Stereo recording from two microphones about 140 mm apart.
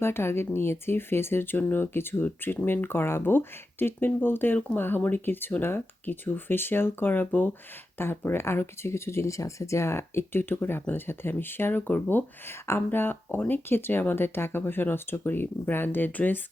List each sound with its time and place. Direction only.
0.0 s speech: 15° left (ahead or behind)